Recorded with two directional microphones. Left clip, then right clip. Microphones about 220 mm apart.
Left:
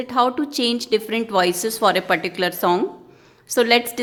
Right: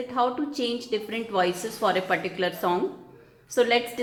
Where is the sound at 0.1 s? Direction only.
45° left (ahead or behind).